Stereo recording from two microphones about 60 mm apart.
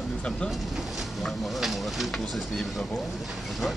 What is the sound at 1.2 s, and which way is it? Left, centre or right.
Speech, centre.